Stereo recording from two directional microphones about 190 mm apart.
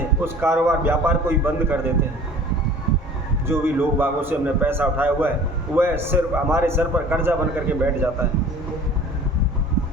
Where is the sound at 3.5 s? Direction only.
10° right (ahead or behind).